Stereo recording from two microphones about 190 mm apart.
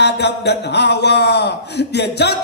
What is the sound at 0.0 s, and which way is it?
A man's voice, 65° left (ahead or behind).